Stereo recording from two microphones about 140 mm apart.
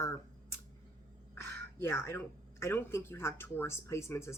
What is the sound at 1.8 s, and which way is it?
Speech, 15° left (ahead or behind).